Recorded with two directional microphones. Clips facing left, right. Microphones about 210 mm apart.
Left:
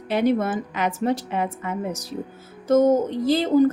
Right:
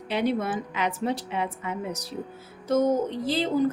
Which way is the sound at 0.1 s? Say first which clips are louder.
Left 5 dB; 45° left (ahead or behind).